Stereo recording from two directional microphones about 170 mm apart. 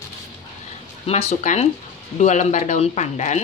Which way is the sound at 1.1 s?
40° left (ahead or behind).